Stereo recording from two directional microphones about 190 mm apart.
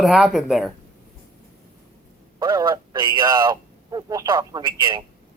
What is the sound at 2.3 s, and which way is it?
Speech, 20° right (ahead or behind).